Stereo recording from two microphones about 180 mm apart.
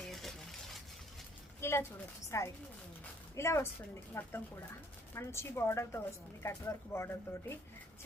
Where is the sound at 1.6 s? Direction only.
15° left (ahead or behind).